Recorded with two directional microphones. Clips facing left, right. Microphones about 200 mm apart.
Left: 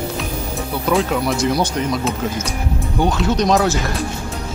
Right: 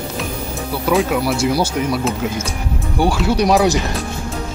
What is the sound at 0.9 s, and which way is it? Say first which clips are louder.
Speech: right 1 dB; centre (ahead or behind).